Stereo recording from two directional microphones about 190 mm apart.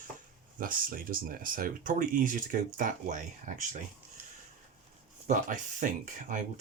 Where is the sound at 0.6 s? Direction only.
50° right (ahead or behind).